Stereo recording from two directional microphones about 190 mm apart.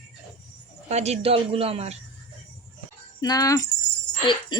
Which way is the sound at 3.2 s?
20° left (ahead or behind).